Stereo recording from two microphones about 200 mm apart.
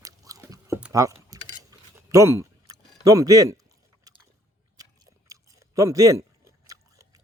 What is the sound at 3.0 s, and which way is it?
Speech, 15° right (ahead or behind).